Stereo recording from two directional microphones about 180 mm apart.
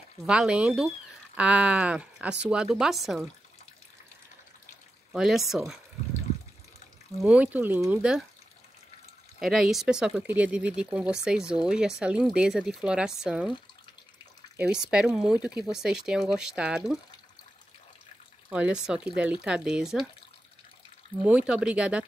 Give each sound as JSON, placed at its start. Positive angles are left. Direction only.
{"t": 0.2, "sound": "speech", "side_deg": -5}
{"t": 5.1, "sound": "speech", "side_deg": 0}
{"t": 7.2, "sound": "speech", "side_deg": -5}
{"t": 9.4, "sound": "speech", "side_deg": 0}
{"t": 14.6, "sound": "speech", "side_deg": -5}
{"t": 18.5, "sound": "speech", "side_deg": -5}
{"t": 21.2, "sound": "speech", "side_deg": -5}